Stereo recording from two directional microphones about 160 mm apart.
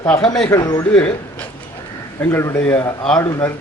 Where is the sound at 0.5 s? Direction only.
25° left (ahead or behind).